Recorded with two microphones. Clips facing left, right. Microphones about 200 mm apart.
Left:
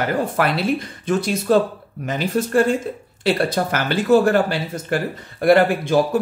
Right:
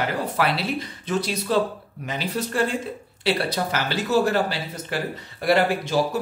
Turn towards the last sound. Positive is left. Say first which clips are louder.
# left 5 dB
turn(degrees=55)  # may be behind; listen again after turning